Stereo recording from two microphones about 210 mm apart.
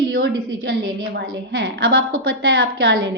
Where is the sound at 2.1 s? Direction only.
75° right (ahead or behind).